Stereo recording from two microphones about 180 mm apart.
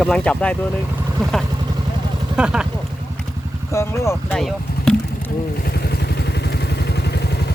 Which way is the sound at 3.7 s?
15° left (ahead or behind).